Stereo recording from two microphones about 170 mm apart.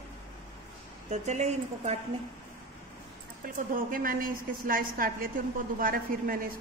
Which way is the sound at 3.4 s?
55° right (ahead or behind).